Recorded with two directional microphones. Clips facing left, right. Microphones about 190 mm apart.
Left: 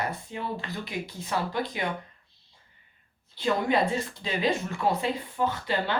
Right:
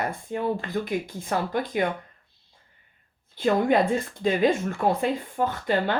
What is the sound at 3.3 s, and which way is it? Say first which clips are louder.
Speech: right 4 dB; 50° right (ahead or behind).